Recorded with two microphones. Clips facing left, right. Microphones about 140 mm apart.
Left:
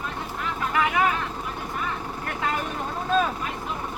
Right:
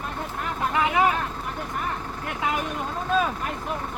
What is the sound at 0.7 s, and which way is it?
Vehicle, 20° right (ahead or behind).